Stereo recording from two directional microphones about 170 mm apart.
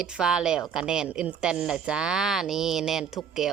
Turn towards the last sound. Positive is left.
turn(degrees=0)  # may be behind; listen again after turning